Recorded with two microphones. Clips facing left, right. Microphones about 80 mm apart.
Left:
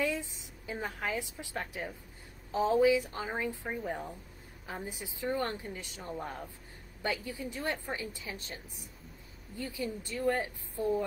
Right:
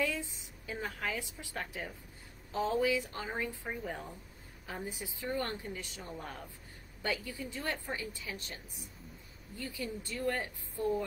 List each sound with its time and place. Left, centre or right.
0.0 s a woman's voice: left
9.6 s speech: centre